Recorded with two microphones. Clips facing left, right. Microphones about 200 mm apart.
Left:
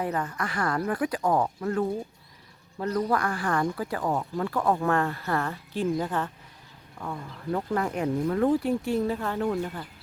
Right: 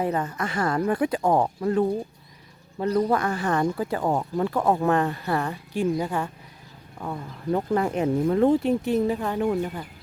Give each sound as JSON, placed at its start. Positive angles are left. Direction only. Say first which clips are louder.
{"t": 0.0, "sound": "speech", "louder": "right 4 dB", "side_deg": -25}
{"t": 7.0, "sound": "speech", "louder": "right 3 dB", "side_deg": -25}